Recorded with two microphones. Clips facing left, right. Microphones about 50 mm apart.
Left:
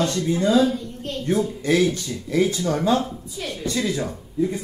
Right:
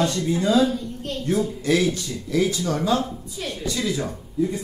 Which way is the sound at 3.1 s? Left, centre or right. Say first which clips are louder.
Even; centre.